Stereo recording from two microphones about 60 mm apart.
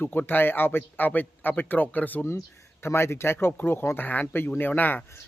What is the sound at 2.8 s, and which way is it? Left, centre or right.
Speech, left.